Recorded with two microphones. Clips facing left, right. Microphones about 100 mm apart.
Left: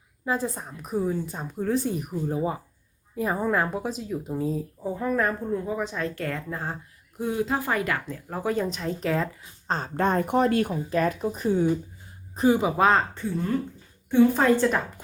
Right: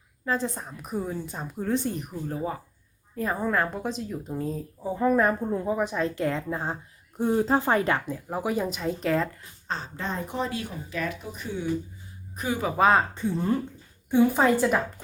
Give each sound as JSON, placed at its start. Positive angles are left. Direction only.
{"t": 0.3, "sound": "a woman's voice", "side_deg": 5}
{"t": 5.0, "sound": "a woman's voice", "side_deg": -20}
{"t": 7.2, "sound": "speech", "side_deg": -35}
{"t": 8.0, "sound": "a woman's voice", "side_deg": -15}
{"t": 9.6, "sound": "speech", "side_deg": 45}
{"t": 12.4, "sound": "speech", "side_deg": 30}
{"t": 12.7, "sound": "a woman's voice", "side_deg": -5}
{"t": 13.1, "sound": "a woman's voice", "side_deg": -20}